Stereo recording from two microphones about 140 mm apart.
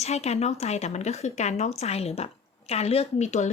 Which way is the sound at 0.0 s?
50° left (ahead or behind).